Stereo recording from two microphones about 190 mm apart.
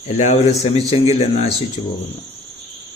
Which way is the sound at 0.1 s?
35° left (ahead or behind).